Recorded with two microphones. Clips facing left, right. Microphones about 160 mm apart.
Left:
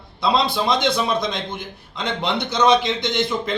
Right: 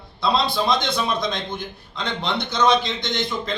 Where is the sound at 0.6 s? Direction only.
20° left (ahead or behind).